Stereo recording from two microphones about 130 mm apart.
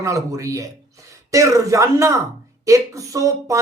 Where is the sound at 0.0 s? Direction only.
25° right (ahead or behind).